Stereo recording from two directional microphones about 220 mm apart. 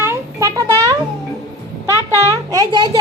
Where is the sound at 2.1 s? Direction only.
15° right (ahead or behind).